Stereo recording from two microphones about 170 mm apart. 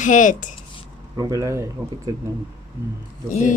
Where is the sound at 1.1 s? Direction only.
20° right (ahead or behind).